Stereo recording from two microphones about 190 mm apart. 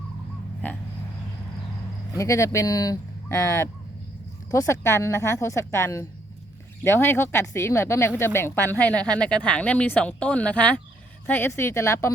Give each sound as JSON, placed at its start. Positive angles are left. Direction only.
{"t": 0.6, "sound": "speech", "side_deg": 10}
{"t": 2.1, "sound": "speech", "side_deg": 15}